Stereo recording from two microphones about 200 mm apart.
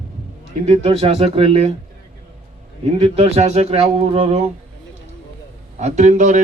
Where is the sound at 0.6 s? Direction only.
30° right (ahead or behind).